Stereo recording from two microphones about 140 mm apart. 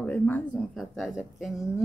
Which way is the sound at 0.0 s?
10° left (ahead or behind).